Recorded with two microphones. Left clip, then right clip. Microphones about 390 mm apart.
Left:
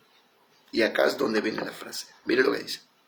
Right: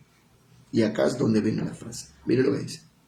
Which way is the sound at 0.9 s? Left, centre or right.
Centre.